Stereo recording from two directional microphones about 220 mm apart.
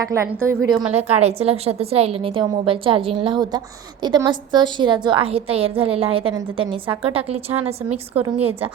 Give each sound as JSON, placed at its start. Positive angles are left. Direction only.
{"t": 0.0, "sound": "a woman's voice", "side_deg": -15}
{"t": 0.9, "sound": "a woman's voice", "side_deg": -30}
{"t": 8.4, "sound": "a woman's voice", "side_deg": -25}